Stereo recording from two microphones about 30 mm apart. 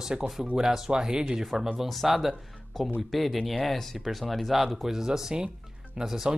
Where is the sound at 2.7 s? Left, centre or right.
Centre.